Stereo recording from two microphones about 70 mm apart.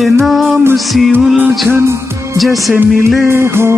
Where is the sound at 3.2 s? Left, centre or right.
Right.